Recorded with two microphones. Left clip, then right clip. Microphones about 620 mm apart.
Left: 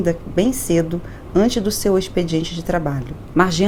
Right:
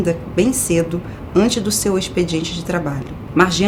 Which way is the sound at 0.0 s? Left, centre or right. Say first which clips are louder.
Right 1 dB; left.